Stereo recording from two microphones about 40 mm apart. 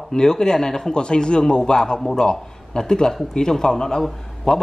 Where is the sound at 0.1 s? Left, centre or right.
Centre.